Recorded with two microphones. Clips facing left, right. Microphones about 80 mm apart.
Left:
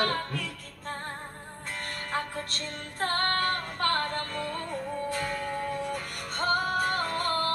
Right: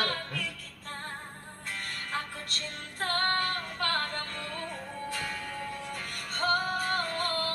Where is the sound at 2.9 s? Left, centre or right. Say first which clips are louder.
Left 1 dB; left.